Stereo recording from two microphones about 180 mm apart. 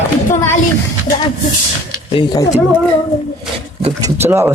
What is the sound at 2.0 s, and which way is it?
Speech, 25° left (ahead or behind).